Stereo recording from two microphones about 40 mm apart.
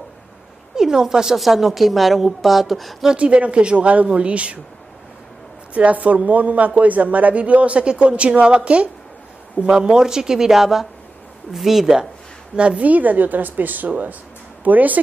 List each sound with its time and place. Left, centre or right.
0.7 s a woman's voice: centre
3.2 s a woman's voice: right
5.8 s a woman's voice: right
9.7 s speech: centre
12.5 s a woman's voice: right